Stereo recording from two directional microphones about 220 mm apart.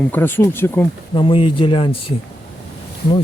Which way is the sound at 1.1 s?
25° left (ahead or behind).